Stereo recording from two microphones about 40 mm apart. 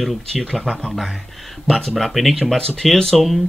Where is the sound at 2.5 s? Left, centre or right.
Centre.